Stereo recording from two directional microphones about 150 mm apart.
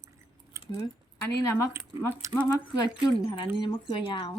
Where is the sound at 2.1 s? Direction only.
20° right (ahead or behind).